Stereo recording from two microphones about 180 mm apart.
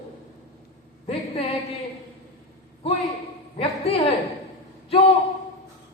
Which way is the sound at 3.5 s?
30° left (ahead or behind).